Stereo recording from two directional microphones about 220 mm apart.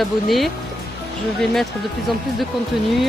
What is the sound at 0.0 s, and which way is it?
Speech, centre (ahead or behind).